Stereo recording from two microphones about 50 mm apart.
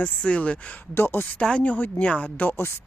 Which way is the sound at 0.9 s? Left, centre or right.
Left.